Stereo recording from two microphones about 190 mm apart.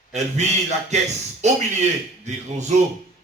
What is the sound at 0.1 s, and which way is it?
A man's voice, 35° right (ahead or behind).